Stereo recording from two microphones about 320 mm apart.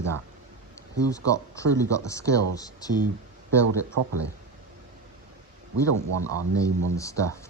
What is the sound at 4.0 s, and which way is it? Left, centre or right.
Speech, right.